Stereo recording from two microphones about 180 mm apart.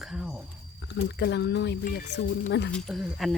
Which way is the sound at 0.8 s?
70° left (ahead or behind).